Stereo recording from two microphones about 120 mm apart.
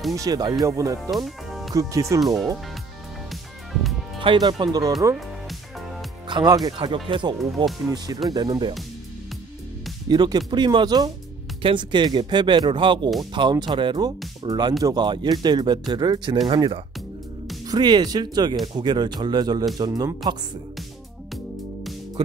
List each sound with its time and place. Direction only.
0.1 s speech: 30° right (ahead or behind)
1.1 s speech: centre (ahead or behind)
1.8 s speech: 30° right (ahead or behind)
4.2 s speech: 40° right (ahead or behind)
6.2 s speech: 40° right (ahead or behind)
8.3 s speech: 35° right (ahead or behind)
10.0 s speech: 40° right (ahead or behind)